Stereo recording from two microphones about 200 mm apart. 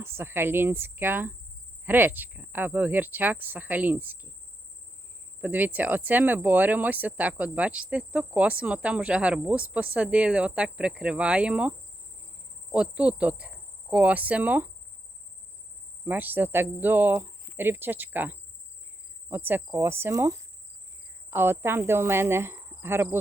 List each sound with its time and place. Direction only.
0.0 s speech: 10° right (ahead or behind)
5.4 s speech: 10° right (ahead or behind)
12.7 s speech: 5° right (ahead or behind)
16.0 s speech: 10° right (ahead or behind)
21.2 s cricket: 10° right (ahead or behind)